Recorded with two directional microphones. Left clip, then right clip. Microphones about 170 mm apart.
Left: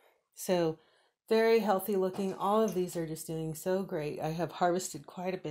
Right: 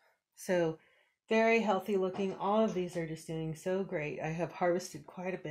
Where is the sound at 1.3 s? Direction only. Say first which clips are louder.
Left 2 dB; 50° left (ahead or behind).